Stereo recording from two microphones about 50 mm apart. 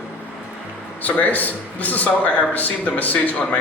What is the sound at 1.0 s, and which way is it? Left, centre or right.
A man's voice, left.